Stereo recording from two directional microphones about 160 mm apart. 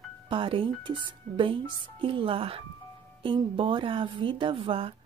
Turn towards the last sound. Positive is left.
turn(degrees=-35)  # may be behind; listen again after turning